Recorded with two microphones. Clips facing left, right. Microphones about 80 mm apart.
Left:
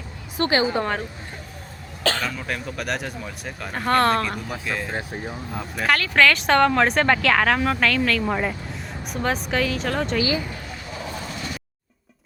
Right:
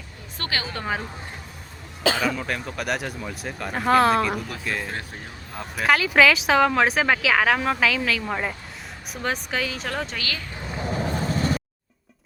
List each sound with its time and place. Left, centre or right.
0.4 s a woman's voice: left
2.0 s speech: centre
4.9 s a woman's voice: left
5.5 s speech: centre
10.2 s a woman's voice: centre
10.8 s vehicle: right